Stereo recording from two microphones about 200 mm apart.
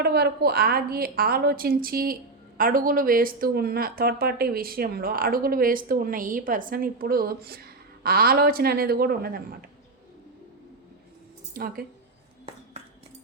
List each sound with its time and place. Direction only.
0.0 s speech: 50° right (ahead or behind)
11.5 s speech: 45° right (ahead or behind)